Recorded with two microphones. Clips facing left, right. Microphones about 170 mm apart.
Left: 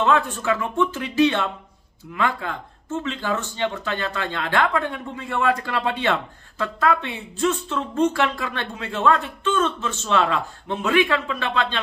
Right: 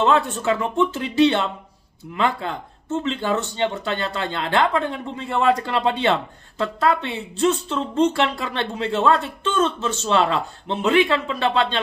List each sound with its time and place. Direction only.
0.0 s speech: 30° right (ahead or behind)